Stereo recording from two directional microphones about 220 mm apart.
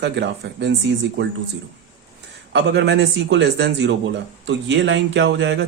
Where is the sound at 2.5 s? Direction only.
55° right (ahead or behind).